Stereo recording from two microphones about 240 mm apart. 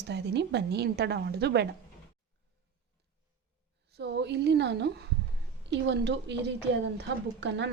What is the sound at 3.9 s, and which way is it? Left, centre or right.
A woman's voice, right.